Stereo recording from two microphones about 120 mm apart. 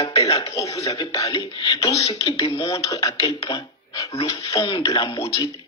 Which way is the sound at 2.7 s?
30° left (ahead or behind).